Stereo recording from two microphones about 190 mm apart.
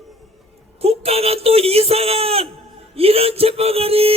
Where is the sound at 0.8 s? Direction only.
30° right (ahead or behind).